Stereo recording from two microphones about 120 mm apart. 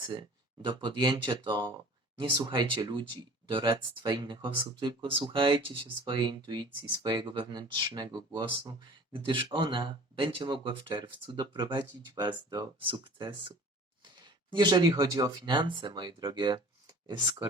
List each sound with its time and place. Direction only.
0.1 s speech: 40° right (ahead or behind)
14.5 s speech: 40° right (ahead or behind)